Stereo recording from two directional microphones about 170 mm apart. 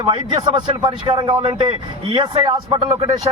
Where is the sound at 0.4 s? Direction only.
25° right (ahead or behind).